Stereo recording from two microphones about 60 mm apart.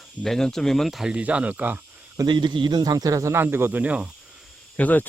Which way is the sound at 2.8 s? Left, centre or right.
Right.